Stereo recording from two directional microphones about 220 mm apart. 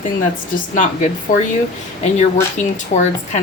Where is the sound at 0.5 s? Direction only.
35° left (ahead or behind).